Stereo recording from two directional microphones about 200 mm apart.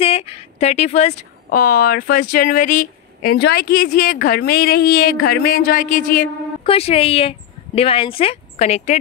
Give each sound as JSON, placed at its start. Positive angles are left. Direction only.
{"t": 0.0, "sound": "a sound", "side_deg": 30}
{"t": 1.5, "sound": "speech", "side_deg": 45}
{"t": 6.6, "sound": "speech", "side_deg": 30}